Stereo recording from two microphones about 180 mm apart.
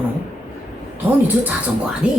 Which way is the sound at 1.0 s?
10° right (ahead or behind).